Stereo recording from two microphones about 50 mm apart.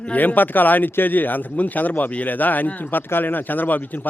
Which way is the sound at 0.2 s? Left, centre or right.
Left.